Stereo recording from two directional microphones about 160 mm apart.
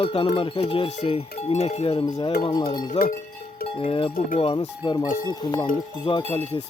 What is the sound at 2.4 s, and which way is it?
Speech, 30° left (ahead or behind).